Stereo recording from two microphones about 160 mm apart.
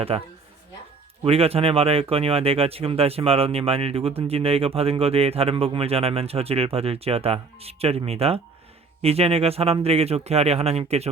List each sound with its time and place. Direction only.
0.1 s speech: 35° right (ahead or behind)